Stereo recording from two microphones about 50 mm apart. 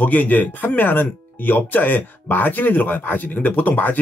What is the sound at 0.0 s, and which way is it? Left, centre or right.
Speech, left.